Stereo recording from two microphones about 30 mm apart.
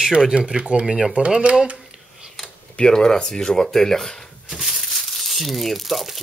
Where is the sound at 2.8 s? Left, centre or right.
Left.